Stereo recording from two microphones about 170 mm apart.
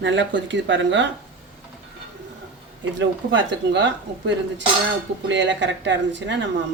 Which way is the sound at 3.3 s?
90° right.